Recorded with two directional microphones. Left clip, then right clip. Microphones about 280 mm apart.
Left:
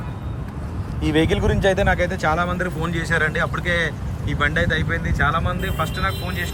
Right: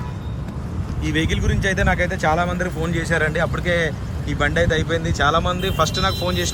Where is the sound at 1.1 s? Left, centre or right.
Left.